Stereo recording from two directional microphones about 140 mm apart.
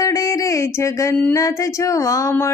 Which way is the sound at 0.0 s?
25° left (ahead or behind).